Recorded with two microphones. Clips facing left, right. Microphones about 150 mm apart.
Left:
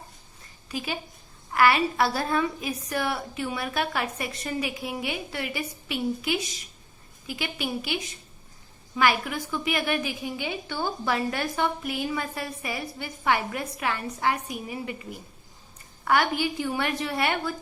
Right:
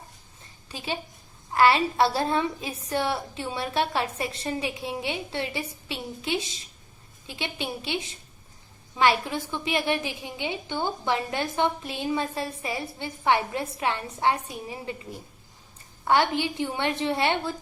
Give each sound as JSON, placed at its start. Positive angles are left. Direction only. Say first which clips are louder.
{"t": 0.7, "sound": "a woman's voice", "louder": "left 1 dB", "side_deg": -25}